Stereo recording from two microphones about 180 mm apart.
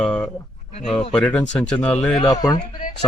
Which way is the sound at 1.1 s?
10° left (ahead or behind).